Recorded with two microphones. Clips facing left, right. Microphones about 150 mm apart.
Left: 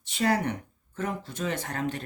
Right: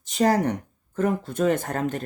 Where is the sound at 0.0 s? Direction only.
40° right (ahead or behind).